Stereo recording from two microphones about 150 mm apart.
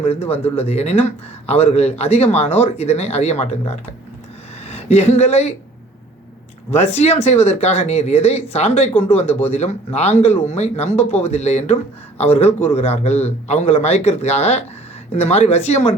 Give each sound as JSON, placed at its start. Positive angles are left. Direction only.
{"t": 0.0, "sound": "a woman's voice", "side_deg": 40}
{"t": 6.7, "sound": "speech", "side_deg": 45}